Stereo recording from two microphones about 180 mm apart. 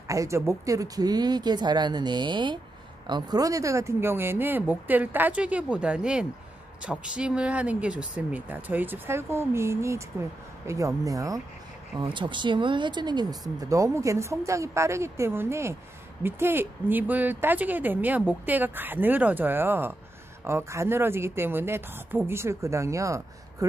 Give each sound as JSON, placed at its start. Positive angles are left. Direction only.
{"t": 0.1, "sound": "speech", "side_deg": -15}